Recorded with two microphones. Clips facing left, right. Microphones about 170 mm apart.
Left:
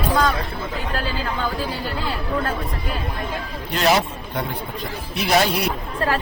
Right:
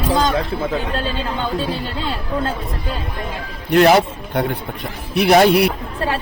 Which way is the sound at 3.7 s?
60° right (ahead or behind).